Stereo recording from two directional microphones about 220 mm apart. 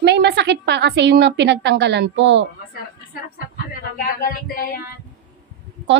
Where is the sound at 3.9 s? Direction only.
40° left (ahead or behind).